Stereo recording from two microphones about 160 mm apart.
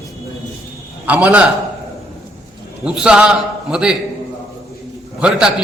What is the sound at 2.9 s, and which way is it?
A man's voice, 5° right (ahead or behind).